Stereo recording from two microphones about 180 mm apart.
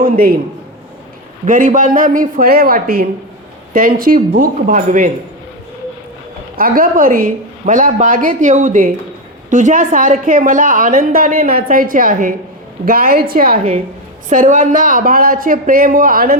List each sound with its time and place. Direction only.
0.0 s a man's voice: 55° right (ahead or behind)
1.5 s a woman's voice: 50° right (ahead or behind)
6.6 s a woman's voice: 50° right (ahead or behind)